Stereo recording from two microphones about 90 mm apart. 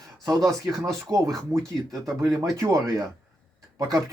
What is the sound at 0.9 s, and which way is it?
Speech, 35° right (ahead or behind).